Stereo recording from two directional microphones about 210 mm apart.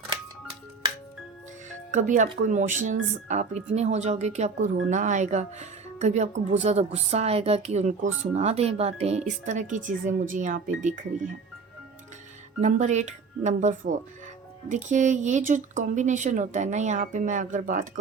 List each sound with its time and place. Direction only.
1.9 s speech: 35° right (ahead or behind)
12.5 s speech: 35° right (ahead or behind)